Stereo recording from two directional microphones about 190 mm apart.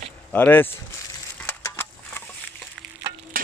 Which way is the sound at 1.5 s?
10° left (ahead or behind).